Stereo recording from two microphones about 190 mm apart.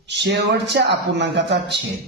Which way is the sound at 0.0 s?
65° right (ahead or behind).